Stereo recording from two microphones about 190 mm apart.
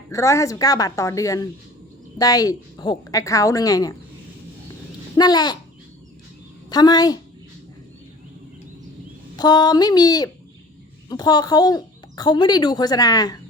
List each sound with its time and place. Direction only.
0.1 s a woman's voice: 15° left (ahead or behind)
5.1 s speech: 20° left (ahead or behind)
6.7 s speech: 20° left (ahead or behind)
9.3 s speech: 20° left (ahead or behind)